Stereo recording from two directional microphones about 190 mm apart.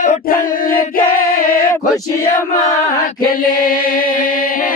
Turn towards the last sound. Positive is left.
turn(degrees=50)  # may be behind; listen again after turning